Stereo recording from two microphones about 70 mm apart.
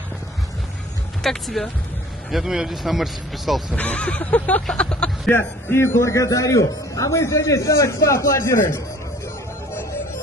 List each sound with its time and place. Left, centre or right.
1.2 s speech: centre
2.3 s speech: centre
3.7 s a sound: centre
5.3 s a man's voice: left